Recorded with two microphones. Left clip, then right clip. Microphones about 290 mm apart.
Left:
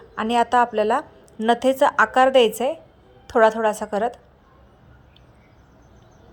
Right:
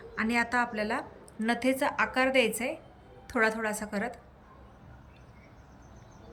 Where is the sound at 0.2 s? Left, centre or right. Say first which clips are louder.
Left 10 dB; left.